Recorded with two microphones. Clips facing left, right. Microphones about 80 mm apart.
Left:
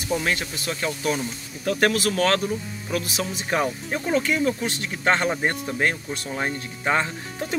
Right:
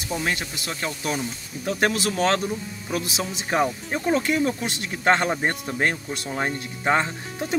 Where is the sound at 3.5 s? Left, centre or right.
Centre.